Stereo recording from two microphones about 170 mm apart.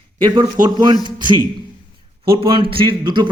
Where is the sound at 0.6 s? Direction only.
50° right (ahead or behind).